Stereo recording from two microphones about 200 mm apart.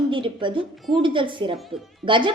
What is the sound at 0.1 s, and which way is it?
A woman's voice, 25° right (ahead or behind).